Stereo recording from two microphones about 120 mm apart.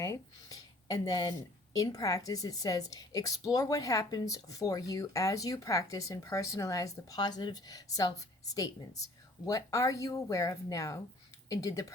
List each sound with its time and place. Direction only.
0.0 s speech: 30° left (ahead or behind)